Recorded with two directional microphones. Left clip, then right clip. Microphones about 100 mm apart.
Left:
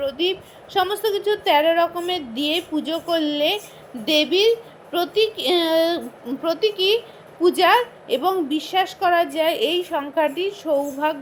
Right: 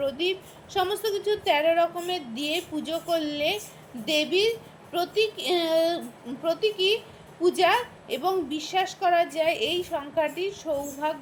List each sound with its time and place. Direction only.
0.0 s a woman's voice: 35° left (ahead or behind)